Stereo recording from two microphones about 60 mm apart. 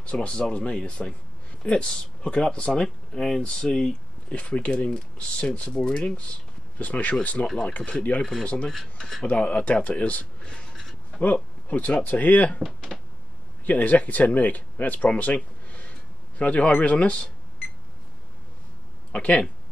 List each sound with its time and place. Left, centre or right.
0.0 s speech: left
4.3 s speech: left
8.2 s speech: centre
9.3 s speech: left
12.6 s speech: centre
13.7 s speech: left
19.1 s speech: centre